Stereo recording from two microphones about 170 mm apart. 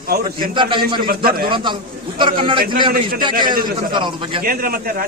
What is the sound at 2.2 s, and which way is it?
Speech, 30° right (ahead or behind).